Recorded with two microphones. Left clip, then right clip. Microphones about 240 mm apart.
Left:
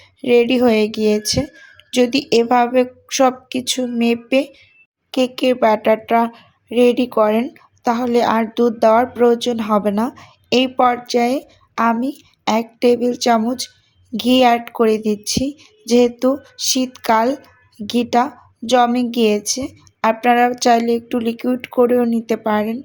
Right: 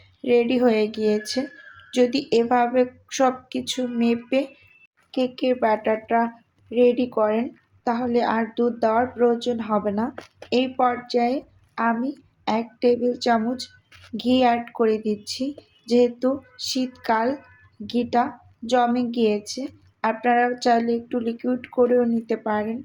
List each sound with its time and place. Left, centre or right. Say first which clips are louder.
0.2 s speech: left 6 dB; left